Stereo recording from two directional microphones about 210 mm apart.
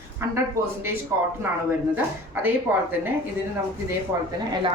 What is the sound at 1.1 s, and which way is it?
Speech, 10° right (ahead or behind).